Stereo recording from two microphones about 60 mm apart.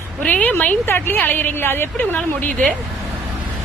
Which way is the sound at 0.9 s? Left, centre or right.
Left.